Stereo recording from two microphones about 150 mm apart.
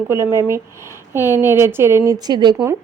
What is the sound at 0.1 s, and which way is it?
A woman's voice, 15° right (ahead or behind).